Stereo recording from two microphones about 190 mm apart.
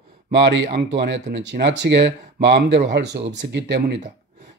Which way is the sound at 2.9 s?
65° right (ahead or behind).